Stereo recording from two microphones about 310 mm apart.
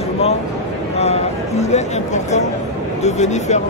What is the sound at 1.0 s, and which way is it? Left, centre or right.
Speech, left.